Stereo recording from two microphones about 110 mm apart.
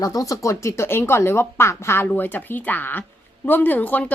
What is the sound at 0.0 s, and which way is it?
Speech, 30° left (ahead or behind).